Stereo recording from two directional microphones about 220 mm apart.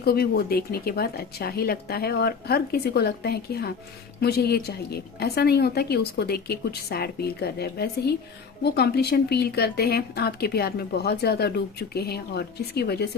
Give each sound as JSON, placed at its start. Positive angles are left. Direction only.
{"t": 0.0, "sound": "speech", "side_deg": 45}